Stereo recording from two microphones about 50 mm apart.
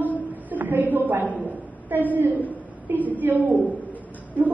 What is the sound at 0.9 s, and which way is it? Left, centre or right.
A woman's voice, right.